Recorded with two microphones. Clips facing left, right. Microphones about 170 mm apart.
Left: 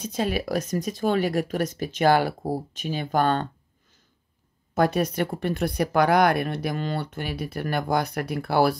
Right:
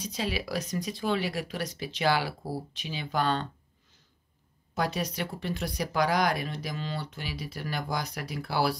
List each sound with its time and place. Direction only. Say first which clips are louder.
0.0 s speech: left 6 dB; 50° left (ahead or behind)
4.7 s speech: left 8 dB; 55° left (ahead or behind)